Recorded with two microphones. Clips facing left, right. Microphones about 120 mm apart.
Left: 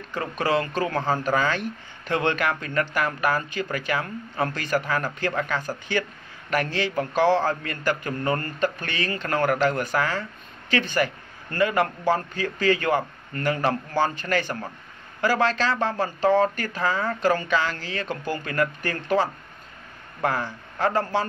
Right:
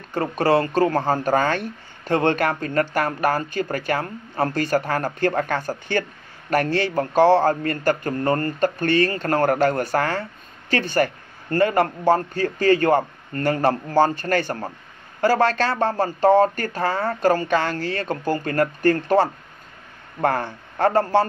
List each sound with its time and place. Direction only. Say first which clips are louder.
0.1 s speech: right 5 dB; 40° right (ahead or behind)